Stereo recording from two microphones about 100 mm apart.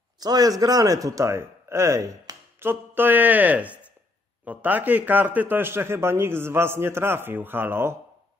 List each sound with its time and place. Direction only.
0.2 s speech: 40° right (ahead or behind); by 8.0 s 25° right (ahead or behind)